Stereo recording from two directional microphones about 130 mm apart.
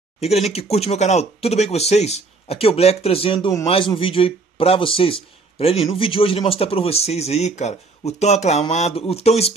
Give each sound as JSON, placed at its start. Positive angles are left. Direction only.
{"t": 0.2, "sound": "a man's voice", "side_deg": 55}